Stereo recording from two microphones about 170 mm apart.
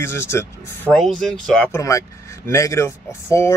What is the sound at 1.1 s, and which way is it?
Speech, centre (ahead or behind).